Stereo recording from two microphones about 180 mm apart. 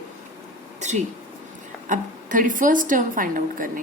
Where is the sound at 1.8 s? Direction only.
45° right (ahead or behind).